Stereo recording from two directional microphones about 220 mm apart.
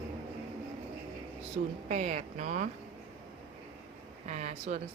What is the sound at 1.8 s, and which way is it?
Speech, 30° right (ahead or behind).